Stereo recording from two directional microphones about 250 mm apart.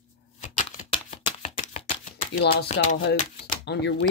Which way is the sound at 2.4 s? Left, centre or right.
Left.